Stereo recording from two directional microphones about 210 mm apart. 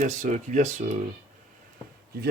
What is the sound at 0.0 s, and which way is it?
Speech, 35° right (ahead or behind).